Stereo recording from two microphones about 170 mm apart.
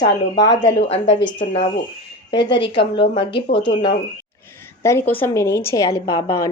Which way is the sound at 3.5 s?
90° left.